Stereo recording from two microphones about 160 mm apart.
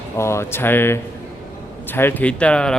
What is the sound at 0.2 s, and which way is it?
Speech, 15° left (ahead or behind).